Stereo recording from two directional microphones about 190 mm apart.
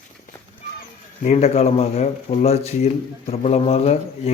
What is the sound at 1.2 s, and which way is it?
Speech, 35° left (ahead or behind).